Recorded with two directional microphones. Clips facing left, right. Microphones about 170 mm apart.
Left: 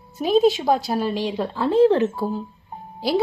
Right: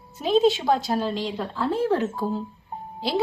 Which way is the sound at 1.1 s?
10° left (ahead or behind).